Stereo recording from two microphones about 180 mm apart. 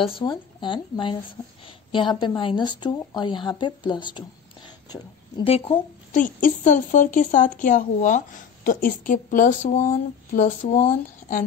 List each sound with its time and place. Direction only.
0.0 s a woman's voice: 30° left (ahead or behind)
6.1 s speech: 45° left (ahead or behind)